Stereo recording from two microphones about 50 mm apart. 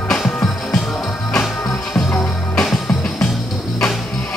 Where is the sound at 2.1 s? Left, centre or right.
Centre.